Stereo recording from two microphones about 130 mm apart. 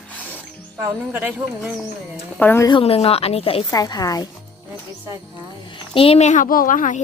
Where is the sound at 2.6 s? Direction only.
45° left (ahead or behind).